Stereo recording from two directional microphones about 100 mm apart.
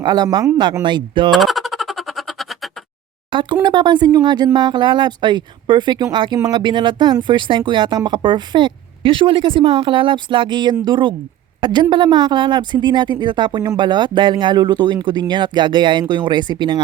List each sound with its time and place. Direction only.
0.0 s speech: 45° right (ahead or behind)
1.3 s music: centre (ahead or behind)
3.2 s a sound: 55° right (ahead or behind)
4.5 s speech: 50° right (ahead or behind)